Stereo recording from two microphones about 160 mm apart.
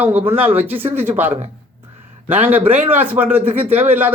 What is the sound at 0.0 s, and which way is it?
Speech, 10° right (ahead or behind).